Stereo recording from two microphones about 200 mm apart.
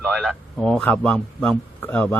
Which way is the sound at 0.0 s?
Centre (ahead or behind).